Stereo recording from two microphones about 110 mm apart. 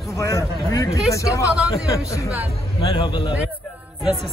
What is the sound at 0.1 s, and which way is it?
Speech, 30° left (ahead or behind).